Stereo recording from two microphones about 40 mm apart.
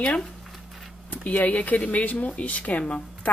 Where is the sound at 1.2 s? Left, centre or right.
Left.